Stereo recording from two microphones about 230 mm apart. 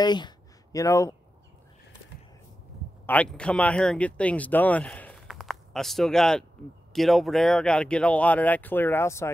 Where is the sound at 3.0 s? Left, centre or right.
Centre.